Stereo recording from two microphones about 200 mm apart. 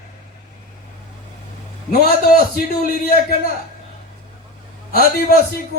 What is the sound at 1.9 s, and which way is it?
A man's voice, 50° left (ahead or behind).